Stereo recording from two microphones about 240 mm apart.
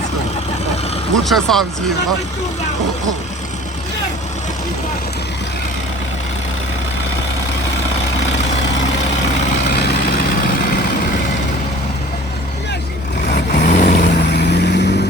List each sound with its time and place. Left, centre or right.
1.2 s speech: centre
9.6 s vehicle: left
13.2 s vehicle: left